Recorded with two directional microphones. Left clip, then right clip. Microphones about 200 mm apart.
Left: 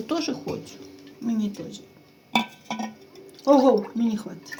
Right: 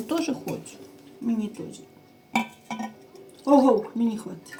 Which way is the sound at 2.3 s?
35° left (ahead or behind).